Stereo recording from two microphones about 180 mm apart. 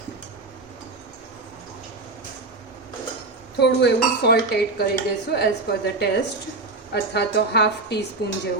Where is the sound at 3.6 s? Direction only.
70° left (ahead or behind).